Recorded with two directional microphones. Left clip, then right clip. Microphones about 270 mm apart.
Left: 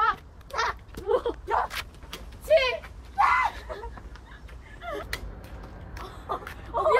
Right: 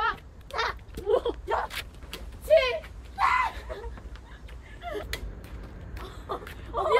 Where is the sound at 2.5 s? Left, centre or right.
Left.